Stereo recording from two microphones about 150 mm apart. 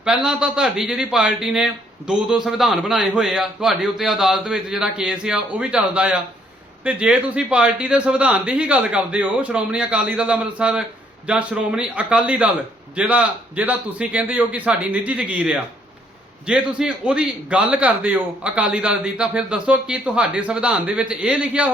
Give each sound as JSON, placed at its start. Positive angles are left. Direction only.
{"t": 0.0, "sound": "a man's voice", "side_deg": -5}